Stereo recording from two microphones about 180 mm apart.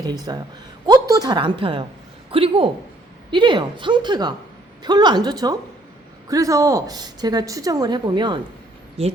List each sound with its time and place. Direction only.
0.0 s a woman's voice: 20° right (ahead or behind)